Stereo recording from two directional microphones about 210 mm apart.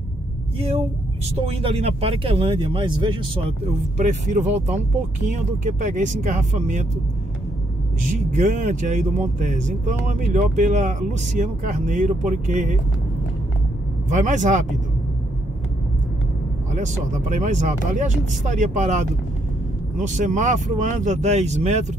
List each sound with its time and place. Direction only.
0.6 s speech: 25° right (ahead or behind)
4.0 s speech: 35° right (ahead or behind)
8.3 s speech: 35° right (ahead or behind)
14.0 s speech: 35° right (ahead or behind)
16.7 s speech: 35° right (ahead or behind)